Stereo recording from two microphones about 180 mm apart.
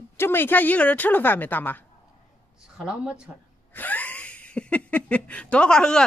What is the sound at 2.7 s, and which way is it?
Speech, 5° right (ahead or behind).